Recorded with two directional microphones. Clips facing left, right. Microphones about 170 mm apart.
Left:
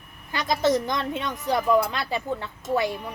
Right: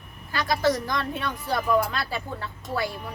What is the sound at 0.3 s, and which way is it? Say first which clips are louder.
A woman's voice: left 1 dB; 20° left (ahead or behind).